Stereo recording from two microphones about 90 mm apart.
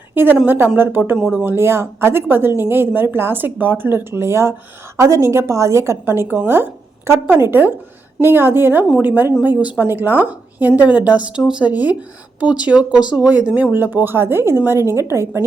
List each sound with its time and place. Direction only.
0.1 s a woman's voice: 25° right (ahead or behind)